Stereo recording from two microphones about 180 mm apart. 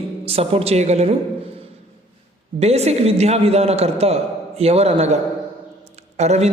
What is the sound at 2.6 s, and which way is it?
A man's voice, 35° right (ahead or behind).